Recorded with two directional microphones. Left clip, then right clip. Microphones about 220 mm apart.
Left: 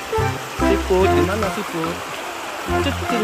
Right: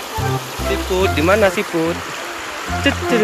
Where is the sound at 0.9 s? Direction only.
20° left (ahead or behind).